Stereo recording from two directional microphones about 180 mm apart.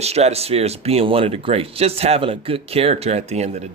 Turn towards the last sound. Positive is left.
turn(degrees=-35)  # may be behind; listen again after turning